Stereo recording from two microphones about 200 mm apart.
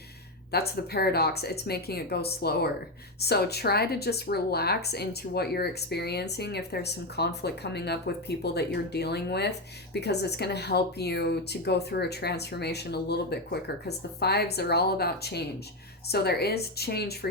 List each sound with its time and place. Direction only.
0.5 s speech: 50° left (ahead or behind)